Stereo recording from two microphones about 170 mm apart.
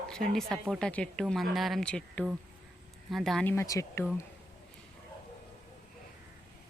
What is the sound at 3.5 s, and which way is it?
Speech, 15° left (ahead or behind).